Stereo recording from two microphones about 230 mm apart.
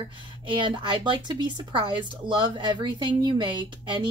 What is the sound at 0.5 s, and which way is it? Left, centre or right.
Speech, right.